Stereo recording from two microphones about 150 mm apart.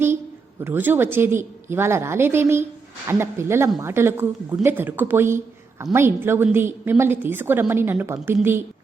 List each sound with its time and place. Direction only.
0.6 s a woman's voice: 15° right (ahead or behind)